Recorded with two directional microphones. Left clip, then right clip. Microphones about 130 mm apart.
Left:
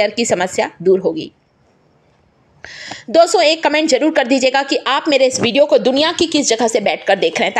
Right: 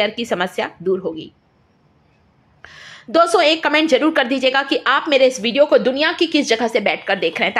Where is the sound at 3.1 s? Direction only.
25° left (ahead or behind).